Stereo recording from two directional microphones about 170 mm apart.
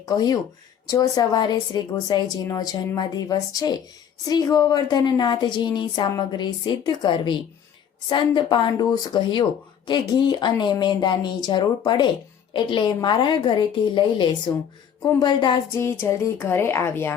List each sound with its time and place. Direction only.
0.0 s a woman's voice: 25° left (ahead or behind)
15.7 s a woman's voice: 15° left (ahead or behind)